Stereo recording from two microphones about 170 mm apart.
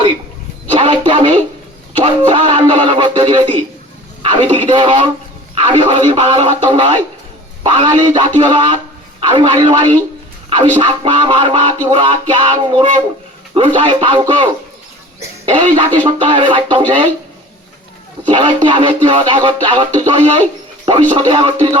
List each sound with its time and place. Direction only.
0.7 s a man's voice: 30° right (ahead or behind)
2.0 s music: 30° right (ahead or behind)
4.2 s a sound: 30° right (ahead or behind)
4.5 s music: 30° right (ahead or behind)
18.3 s music: 30° right (ahead or behind)